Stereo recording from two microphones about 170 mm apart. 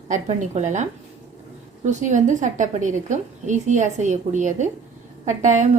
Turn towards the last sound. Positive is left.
turn(degrees=-45)  # may be behind; listen again after turning